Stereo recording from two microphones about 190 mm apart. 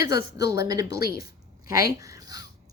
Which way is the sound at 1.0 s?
50° left (ahead or behind).